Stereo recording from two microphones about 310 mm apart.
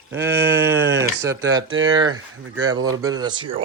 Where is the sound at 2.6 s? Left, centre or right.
Centre.